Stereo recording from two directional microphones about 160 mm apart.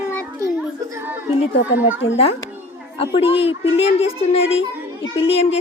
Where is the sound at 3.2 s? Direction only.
35° left (ahead or behind).